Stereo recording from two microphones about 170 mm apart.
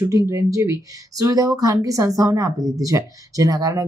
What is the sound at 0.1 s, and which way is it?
A woman's voice, 20° right (ahead or behind).